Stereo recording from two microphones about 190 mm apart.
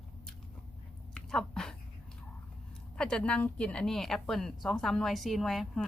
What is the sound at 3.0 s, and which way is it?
Speech, 5° left (ahead or behind).